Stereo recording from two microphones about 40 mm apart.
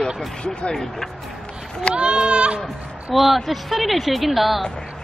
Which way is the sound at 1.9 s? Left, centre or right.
Right.